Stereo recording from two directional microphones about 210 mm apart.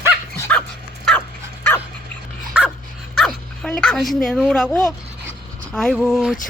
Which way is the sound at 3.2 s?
Centre (ahead or behind).